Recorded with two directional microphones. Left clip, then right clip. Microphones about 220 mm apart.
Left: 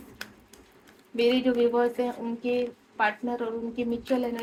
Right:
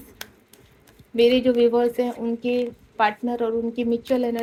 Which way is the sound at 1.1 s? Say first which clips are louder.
Right 6 dB; 50° right (ahead or behind).